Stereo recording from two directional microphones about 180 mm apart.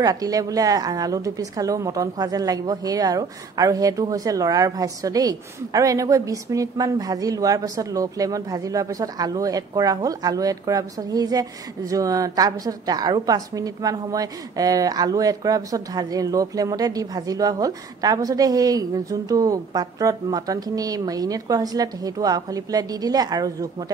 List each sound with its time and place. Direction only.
0.0 s a woman's voice: 20° right (ahead or behind)